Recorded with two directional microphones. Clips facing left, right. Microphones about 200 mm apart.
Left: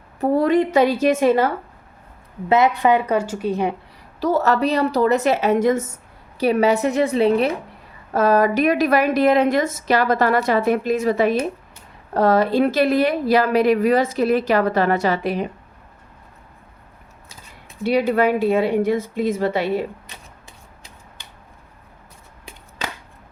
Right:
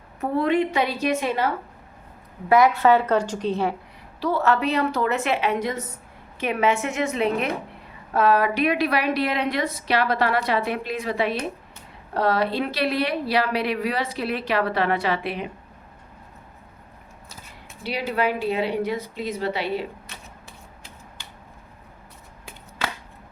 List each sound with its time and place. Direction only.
0.2 s a woman's voice: 40° left (ahead or behind)
2.5 s a woman's voice: 20° left (ahead or behind)
4.2 s a woman's voice: 40° left (ahead or behind)
6.4 s a woman's voice: 35° left (ahead or behind)
18.1 s a woman's voice: 50° left (ahead or behind)